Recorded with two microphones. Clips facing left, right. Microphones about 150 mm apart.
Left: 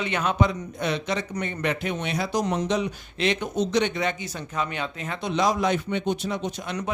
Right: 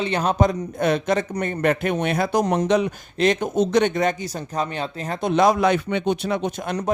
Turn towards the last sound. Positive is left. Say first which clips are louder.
# right 5 dB
turn(degrees=-55)  # may be behind; listen again after turning